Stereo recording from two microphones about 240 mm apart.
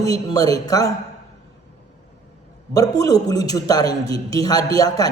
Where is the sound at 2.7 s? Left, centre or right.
Centre.